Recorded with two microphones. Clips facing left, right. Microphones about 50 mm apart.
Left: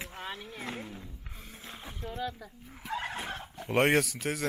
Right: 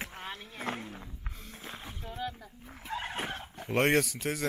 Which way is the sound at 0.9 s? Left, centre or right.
Right.